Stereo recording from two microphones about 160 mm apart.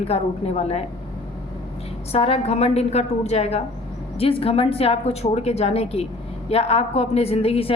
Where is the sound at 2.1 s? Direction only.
40° left (ahead or behind).